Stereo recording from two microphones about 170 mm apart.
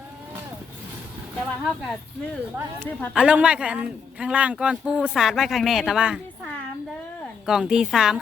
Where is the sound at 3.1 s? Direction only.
5° right (ahead or behind).